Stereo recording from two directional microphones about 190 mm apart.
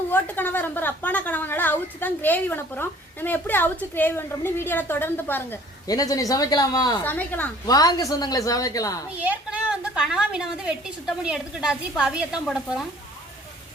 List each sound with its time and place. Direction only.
0.1 s a woman's voice: 10° left (ahead or behind)
7.0 s a woman's voice: 10° left (ahead or behind)
7.7 s a woman's voice: 20° left (ahead or behind)
9.2 s a woman's voice: 5° right (ahead or behind)